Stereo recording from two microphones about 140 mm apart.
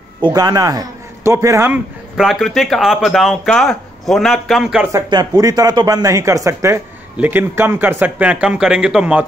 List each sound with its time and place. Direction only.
0.3 s a man's voice: 25° right (ahead or behind)
1.7 s speech: centre (ahead or behind)
4.9 s speech: 25° right (ahead or behind); by 9.2 s 10° right (ahead or behind)